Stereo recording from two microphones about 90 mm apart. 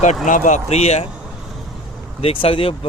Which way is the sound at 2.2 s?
90° left.